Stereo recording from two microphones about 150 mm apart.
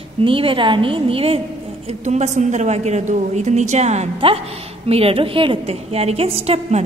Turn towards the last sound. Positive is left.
turn(degrees=-45)  # may be behind; listen again after turning